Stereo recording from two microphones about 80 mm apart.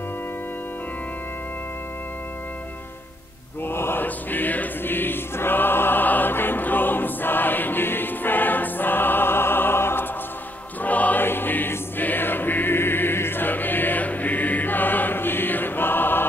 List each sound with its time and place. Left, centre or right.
3.6 s choir: left